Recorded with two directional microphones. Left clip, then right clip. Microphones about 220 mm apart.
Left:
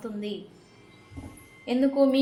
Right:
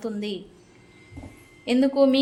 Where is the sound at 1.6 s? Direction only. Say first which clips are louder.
Right 3 dB; 40° right (ahead or behind).